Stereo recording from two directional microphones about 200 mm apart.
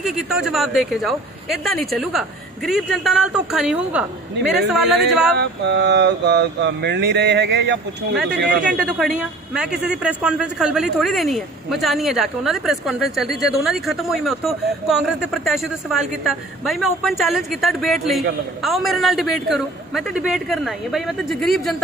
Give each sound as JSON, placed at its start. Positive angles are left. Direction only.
{"t": 0.0, "sound": "a man's voice", "side_deg": -5}
{"t": 5.4, "sound": "mantra", "side_deg": -60}
{"t": 8.9, "sound": "a man's voice", "side_deg": -5}